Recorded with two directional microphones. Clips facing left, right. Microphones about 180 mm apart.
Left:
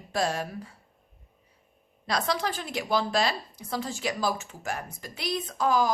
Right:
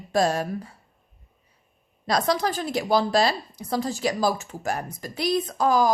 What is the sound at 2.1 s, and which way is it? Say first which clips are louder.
A woman's voice: right 5 dB; 40° right (ahead or behind).